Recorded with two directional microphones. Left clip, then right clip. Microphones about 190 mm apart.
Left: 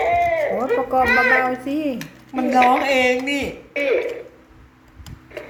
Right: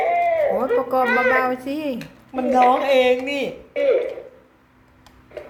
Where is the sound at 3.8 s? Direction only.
5° right (ahead or behind).